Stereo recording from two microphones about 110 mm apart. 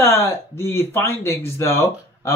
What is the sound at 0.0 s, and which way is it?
Speech, 25° left (ahead or behind).